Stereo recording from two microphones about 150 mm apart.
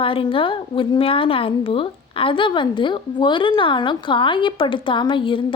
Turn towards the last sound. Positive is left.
turn(degrees=35)  # may be behind; listen again after turning